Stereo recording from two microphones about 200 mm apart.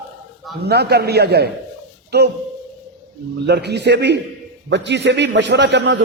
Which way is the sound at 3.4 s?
55° right (ahead or behind).